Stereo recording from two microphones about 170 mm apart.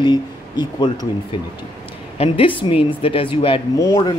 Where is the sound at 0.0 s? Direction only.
25° left (ahead or behind).